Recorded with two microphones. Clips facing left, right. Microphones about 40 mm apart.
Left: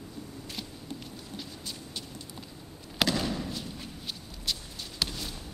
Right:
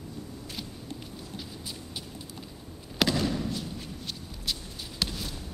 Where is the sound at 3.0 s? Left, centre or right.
Centre.